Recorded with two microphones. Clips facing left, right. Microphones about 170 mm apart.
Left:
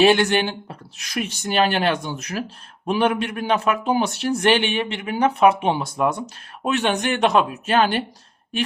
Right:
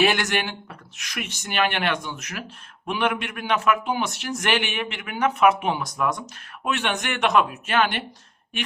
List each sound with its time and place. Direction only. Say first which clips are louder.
0.0 s speech: left 6 dB; 30° left (ahead or behind)